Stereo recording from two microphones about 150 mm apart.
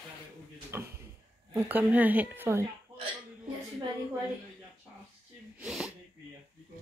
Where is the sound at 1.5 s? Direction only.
15° right (ahead or behind).